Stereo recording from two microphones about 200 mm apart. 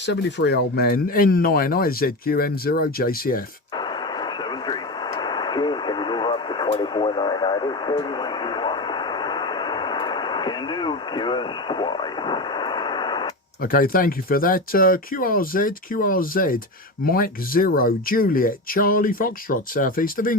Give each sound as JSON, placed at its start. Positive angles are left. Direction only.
{"t": 0.0, "sound": "speech", "side_deg": 60}
{"t": 3.8, "sound": "radio", "side_deg": 20}
{"t": 13.6, "sound": "speech", "side_deg": 45}